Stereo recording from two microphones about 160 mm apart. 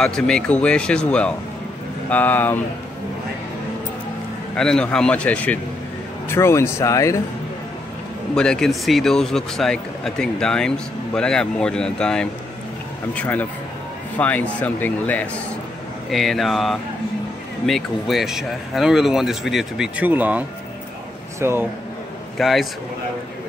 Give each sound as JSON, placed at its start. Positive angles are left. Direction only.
{"t": 0.0, "sound": "speech", "side_deg": 5}
{"t": 4.6, "sound": "speech", "side_deg": 5}
{"t": 8.4, "sound": "speech", "side_deg": 5}
{"t": 22.4, "sound": "speech", "side_deg": 0}